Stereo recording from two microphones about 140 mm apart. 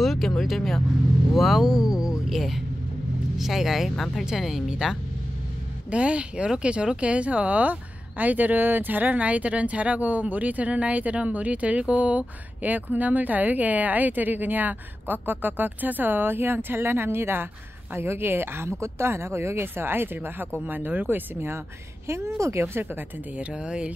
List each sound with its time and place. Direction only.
0.0 s speech: centre (ahead or behind)